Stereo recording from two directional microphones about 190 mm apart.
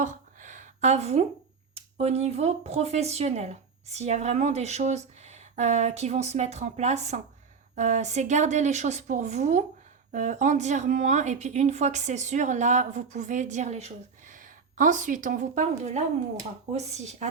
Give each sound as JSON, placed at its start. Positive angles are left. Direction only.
{"t": 0.0, "sound": "a sound", "side_deg": -40}
{"t": 1.7, "sound": "a woman's voice", "side_deg": -35}
{"t": 16.7, "sound": "a woman's voice", "side_deg": -35}